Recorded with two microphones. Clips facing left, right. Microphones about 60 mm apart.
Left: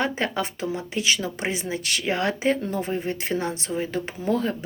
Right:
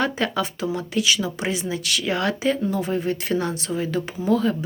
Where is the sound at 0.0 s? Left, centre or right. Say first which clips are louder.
Right 2 dB; left.